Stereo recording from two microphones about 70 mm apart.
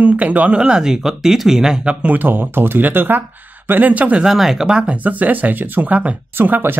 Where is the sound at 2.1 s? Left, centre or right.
Right.